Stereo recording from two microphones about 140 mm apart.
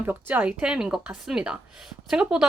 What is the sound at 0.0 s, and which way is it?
A woman's voice, 15° right (ahead or behind).